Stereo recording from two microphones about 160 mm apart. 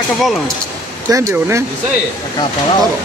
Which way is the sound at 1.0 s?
20° right (ahead or behind).